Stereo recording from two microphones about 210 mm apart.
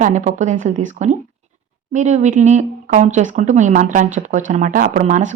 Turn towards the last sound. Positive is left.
turn(degrees=-35)  # may be behind; listen again after turning